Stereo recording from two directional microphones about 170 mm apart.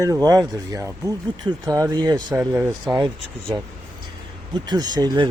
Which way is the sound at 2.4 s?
15° right (ahead or behind).